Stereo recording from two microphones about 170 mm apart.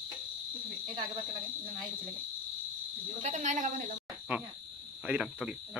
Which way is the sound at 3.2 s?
45° right (ahead or behind).